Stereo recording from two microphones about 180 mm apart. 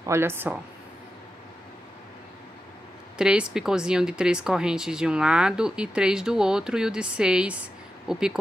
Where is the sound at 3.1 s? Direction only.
5° right (ahead or behind).